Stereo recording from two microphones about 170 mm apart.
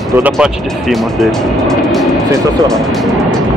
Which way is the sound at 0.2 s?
5° right (ahead or behind).